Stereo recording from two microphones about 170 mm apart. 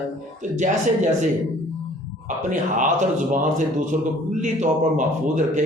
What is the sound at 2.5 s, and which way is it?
Speech, 50° right (ahead or behind).